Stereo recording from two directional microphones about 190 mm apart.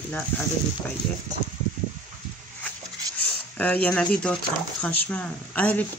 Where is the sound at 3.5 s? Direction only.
10° left (ahead or behind).